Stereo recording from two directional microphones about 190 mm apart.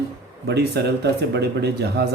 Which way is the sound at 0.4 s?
60° right (ahead or behind).